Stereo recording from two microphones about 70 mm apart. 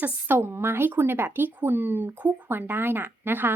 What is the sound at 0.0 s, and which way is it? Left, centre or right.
A woman's voice, right.